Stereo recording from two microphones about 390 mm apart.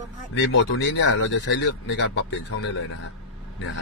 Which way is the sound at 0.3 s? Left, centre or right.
Left.